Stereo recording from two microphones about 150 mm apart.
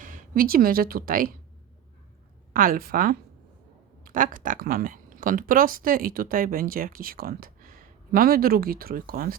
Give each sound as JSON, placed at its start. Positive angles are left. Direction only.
{"t": 0.0, "sound": "a woman's voice", "side_deg": -60}
{"t": 2.5, "sound": "speech", "side_deg": -70}